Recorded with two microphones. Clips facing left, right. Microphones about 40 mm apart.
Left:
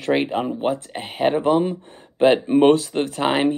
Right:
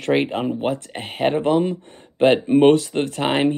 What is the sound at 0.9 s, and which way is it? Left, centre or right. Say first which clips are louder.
Speech: even; right.